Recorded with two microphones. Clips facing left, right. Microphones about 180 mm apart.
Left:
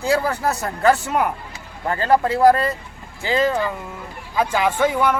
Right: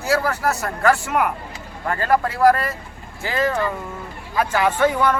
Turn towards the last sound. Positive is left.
turn(degrees=10)  # may be behind; listen again after turning